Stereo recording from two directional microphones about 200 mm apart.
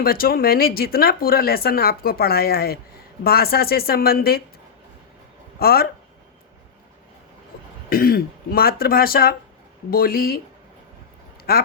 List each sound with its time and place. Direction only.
0.0 s speech: 45° left (ahead or behind)
5.5 s speech: 50° left (ahead or behind)
7.9 s speech: 50° left (ahead or behind)
11.5 s speech: 50° left (ahead or behind)